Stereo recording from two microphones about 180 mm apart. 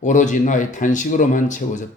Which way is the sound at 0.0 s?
45° left (ahead or behind).